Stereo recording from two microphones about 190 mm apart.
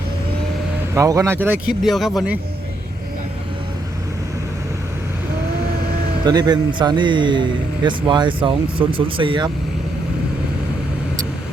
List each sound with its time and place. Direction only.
0.9 s speech: 15° right (ahead or behind)
6.2 s a man's voice: 20° right (ahead or behind)